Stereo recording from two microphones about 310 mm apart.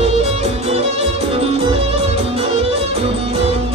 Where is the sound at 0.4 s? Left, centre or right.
Centre.